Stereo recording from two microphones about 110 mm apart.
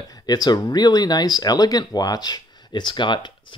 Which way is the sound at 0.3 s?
40° left (ahead or behind).